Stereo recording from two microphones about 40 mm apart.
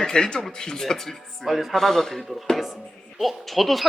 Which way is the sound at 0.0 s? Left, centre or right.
Centre.